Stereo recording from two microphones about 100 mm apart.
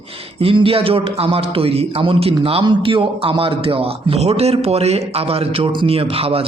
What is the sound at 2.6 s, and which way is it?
A man's voice, 60° right (ahead or behind).